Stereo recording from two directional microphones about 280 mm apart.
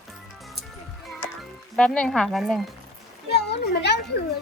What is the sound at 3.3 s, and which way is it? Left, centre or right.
Speech, left.